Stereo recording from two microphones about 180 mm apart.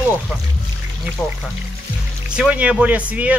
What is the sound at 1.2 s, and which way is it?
Speech, 5° left (ahead or behind).